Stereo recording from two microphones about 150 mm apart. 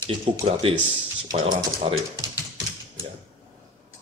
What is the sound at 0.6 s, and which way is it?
Speech, 40° right (ahead or behind).